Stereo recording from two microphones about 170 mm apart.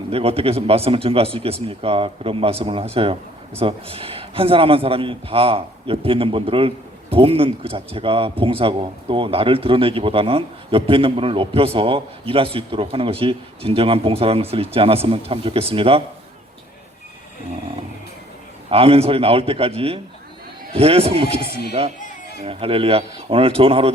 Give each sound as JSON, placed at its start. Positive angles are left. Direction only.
{"t": 0.1, "sound": "a man's voice", "side_deg": -35}
{"t": 18.7, "sound": "a man's voice", "side_deg": -35}